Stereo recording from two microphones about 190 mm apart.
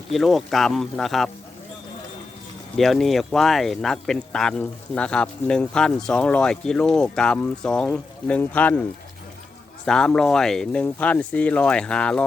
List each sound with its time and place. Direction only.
0.1 s speech: centre (ahead or behind)
2.7 s speech: centre (ahead or behind)
9.8 s speech: 5° left (ahead or behind)